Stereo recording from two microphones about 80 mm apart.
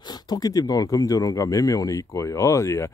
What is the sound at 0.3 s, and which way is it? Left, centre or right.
Speech, left.